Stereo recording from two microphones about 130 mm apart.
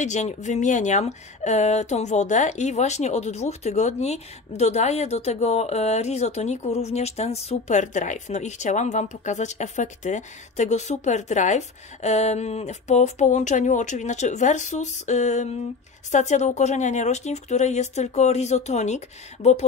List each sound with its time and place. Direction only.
0.0 s speech: 65° left (ahead or behind)